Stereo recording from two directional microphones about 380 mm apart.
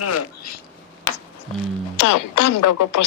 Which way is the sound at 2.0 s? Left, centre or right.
Left.